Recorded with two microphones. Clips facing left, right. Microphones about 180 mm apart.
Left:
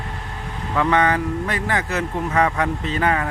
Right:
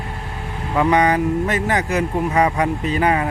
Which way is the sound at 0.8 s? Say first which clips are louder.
Right 3 dB; 15° right (ahead or behind).